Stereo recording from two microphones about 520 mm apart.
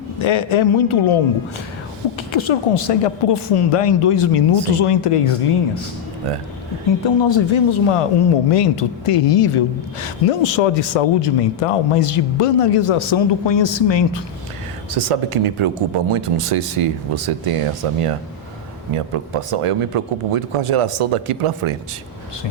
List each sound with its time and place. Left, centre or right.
0.2 s a man's voice: left
2.3 s speech: left
7.0 s speech: left
14.9 s speech: right